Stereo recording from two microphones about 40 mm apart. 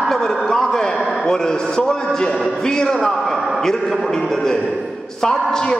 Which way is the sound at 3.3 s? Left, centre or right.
Centre.